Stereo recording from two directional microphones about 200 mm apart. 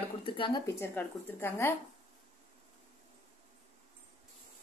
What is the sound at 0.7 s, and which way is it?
Speech, 10° left (ahead or behind).